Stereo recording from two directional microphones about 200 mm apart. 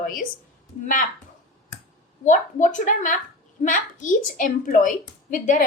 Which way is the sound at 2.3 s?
40° left (ahead or behind).